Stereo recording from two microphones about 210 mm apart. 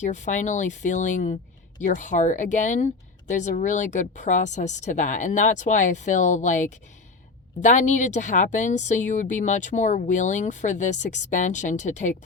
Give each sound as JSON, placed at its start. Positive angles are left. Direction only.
{"t": 0.0, "sound": "speech", "side_deg": 35}